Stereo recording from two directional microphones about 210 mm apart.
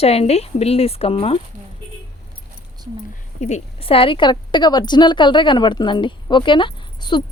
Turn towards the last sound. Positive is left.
turn(degrees=20)  # may be behind; listen again after turning